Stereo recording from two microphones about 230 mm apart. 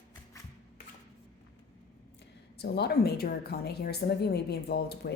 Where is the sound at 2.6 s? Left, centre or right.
Left.